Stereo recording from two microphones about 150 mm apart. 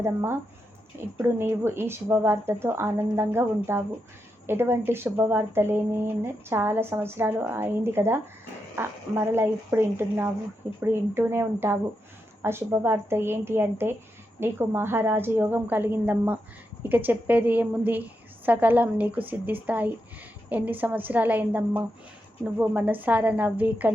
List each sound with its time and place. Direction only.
0.0 s a woman's voice: 15° right (ahead or behind)